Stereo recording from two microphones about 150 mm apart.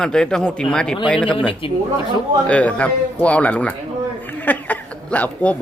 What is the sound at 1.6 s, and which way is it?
Speech, 35° left (ahead or behind).